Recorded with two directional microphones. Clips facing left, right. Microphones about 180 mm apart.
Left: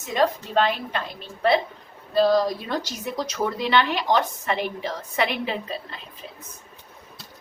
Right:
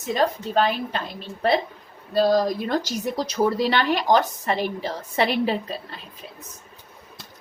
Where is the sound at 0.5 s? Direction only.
35° right (ahead or behind).